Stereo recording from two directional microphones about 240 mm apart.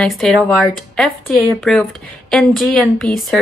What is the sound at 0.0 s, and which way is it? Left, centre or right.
A woman's voice, centre.